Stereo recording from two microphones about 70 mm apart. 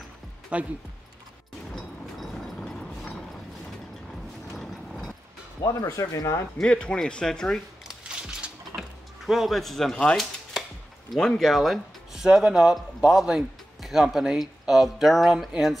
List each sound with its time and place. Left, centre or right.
0.5 s speech: centre
1.8 s vehicle: centre
4.5 s mechanisms: centre
5.6 s speech: left
6.6 s speech: centre
7.9 s a sound: centre
9.2 s speech: centre